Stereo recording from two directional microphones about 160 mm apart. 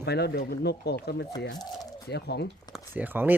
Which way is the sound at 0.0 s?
90° left.